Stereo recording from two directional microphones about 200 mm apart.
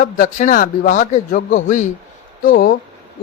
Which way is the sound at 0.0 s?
40° left (ahead or behind).